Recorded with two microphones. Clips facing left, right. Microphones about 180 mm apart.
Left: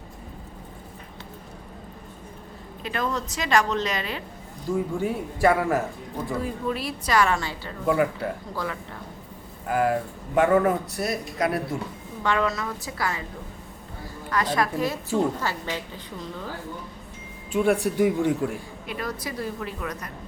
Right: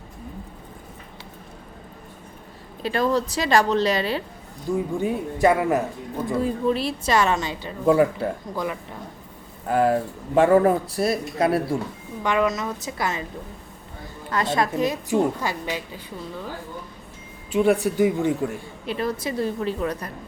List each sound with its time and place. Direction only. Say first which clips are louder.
2.8 s speech: right 6 dB; 35° right (ahead or behind)
4.9 s a woman's voice: right 3 dB; 20° right (ahead or behind)
7.9 s a woman's voice: right 5 dB; 30° right (ahead or behind)
8.5 s speech: right 3 dB; 15° right (ahead or behind)
9.6 s speech: right 3 dB; 30° right (ahead or behind)
12.2 s a woman's voice: right 3 dB; 15° right (ahead or behind)
14.3 s a woman's voice: right 2 dB; 25° right (ahead or behind)
17.5 s a man's voice: right 2 dB; centre (ahead or behind)
18.9 s a woman's voice: right 6 dB; 25° right (ahead or behind)